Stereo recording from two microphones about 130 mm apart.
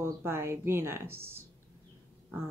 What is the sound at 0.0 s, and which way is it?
Speech, 20° right (ahead or behind).